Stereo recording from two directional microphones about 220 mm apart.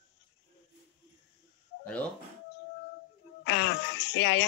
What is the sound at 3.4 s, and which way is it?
Speech, 50° left (ahead or behind).